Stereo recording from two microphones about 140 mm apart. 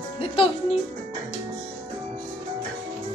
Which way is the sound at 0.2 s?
40° left (ahead or behind).